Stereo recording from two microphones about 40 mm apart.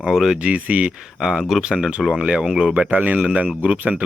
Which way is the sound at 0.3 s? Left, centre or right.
Right.